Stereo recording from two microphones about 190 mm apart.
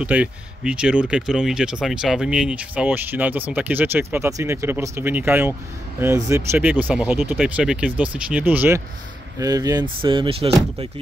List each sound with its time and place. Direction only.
0.0 s speech: 5° right (ahead or behind); by 10.9 s 30° right (ahead or behind)